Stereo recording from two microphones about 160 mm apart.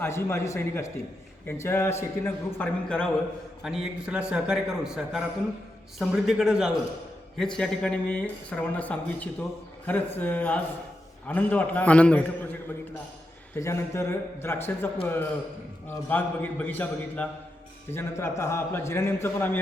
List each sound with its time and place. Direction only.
0.0 s speech: 15° left (ahead or behind)
3.6 s a man's voice: 5° right (ahead or behind); by 14.8 s 15° left (ahead or behind)
16.0 s speech: 10° left (ahead or behind)